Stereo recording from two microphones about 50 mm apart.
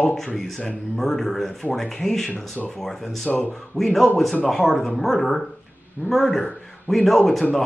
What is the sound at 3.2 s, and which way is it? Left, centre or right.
Speech, left.